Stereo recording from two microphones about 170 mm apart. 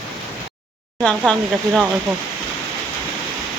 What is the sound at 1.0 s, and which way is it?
Speech, 5° left (ahead or behind).